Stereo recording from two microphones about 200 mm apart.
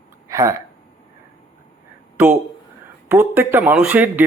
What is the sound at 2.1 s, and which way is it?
Speech, 10° right (ahead or behind).